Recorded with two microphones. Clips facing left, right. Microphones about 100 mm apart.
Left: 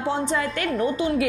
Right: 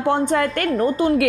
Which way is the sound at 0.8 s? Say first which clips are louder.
Right 5 dB; 45° right (ahead or behind).